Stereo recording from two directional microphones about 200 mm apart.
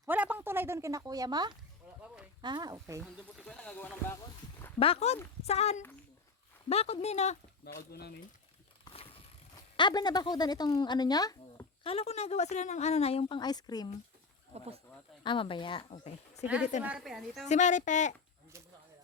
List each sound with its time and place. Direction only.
0.0 s speech: 10° right (ahead or behind)
3.0 s speech: 5° left (ahead or behind)
4.8 s speech: 30° left (ahead or behind)
7.6 s speech: 50° left (ahead or behind)
8.8 s mechanisms: 30° left (ahead or behind)
9.7 s speech: 20° left (ahead or behind)
15.2 s speech: 25° left (ahead or behind)
16.8 s a woman's voice: 5° right (ahead or behind)
17.5 s speech: 35° left (ahead or behind)